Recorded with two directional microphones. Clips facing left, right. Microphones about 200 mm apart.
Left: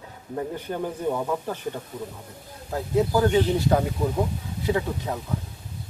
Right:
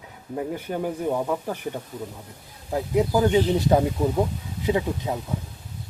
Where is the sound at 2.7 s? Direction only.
15° right (ahead or behind).